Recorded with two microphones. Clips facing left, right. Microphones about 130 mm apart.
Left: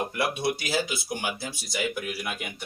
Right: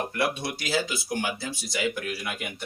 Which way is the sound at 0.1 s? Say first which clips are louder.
Left 1 dB; 10° left (ahead or behind).